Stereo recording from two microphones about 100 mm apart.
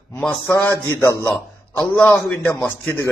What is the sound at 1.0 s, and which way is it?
Speech, 25° left (ahead or behind).